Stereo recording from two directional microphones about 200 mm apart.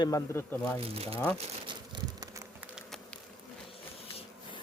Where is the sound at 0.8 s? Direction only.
30° right (ahead or behind).